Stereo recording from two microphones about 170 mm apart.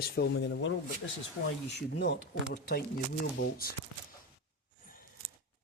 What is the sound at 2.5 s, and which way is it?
Speech, 65° left (ahead or behind).